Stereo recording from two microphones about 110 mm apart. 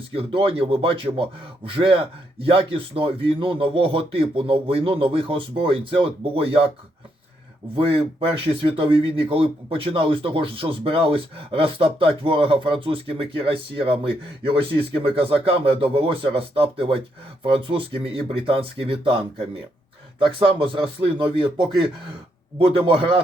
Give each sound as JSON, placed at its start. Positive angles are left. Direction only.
{"t": 0.1, "sound": "speech", "side_deg": -60}
{"t": 7.8, "sound": "speech", "side_deg": -60}
{"t": 22.5, "sound": "speech", "side_deg": -55}